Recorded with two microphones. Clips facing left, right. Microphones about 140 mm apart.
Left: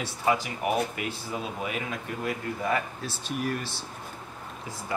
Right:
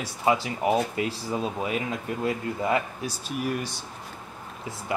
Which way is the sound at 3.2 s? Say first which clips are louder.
Right 1 dB; 5° right (ahead or behind).